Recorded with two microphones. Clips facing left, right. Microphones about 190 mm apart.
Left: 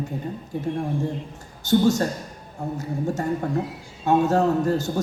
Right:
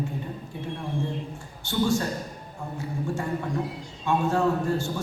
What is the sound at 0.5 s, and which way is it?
A man's voice, 45° left (ahead or behind).